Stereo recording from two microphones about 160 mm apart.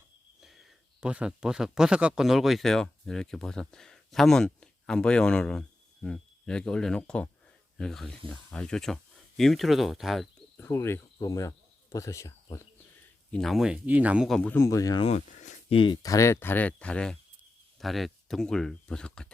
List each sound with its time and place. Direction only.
0.4 s speech: centre (ahead or behind)
10.6 s speech: 15° left (ahead or behind)
13.3 s speech: centre (ahead or behind)
14.5 s speech: 20° left (ahead or behind)
15.0 s a sound: 45° left (ahead or behind)
15.8 s speech: 25° left (ahead or behind); by 19.3 s 5° left (ahead or behind)